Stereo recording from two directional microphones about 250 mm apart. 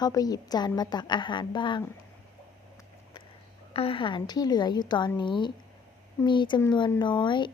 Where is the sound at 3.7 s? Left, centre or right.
Left.